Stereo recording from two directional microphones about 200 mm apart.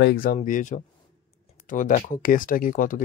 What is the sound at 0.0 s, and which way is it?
Speech, 45° left (ahead or behind).